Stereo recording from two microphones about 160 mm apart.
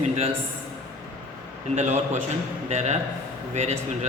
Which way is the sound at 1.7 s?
45° right (ahead or behind).